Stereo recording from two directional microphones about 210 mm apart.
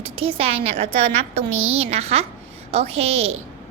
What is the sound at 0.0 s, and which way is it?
A woman's voice, 25° right (ahead or behind).